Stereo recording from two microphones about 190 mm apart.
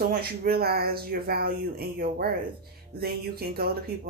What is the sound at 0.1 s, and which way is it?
Speech, 55° right (ahead or behind).